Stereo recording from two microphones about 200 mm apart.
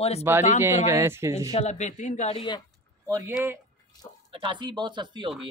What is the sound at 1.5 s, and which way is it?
Speech, 35° left (ahead or behind).